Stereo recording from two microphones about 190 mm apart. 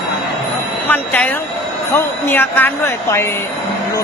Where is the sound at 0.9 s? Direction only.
10° left (ahead or behind).